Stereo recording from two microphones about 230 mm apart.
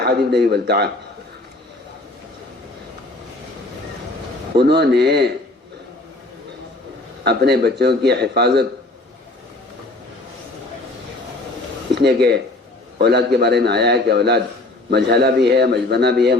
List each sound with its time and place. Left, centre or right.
0.0 s a man's voice: right
4.5 s a man's voice: right
7.3 s a man's voice: right
11.9 s a man's voice: right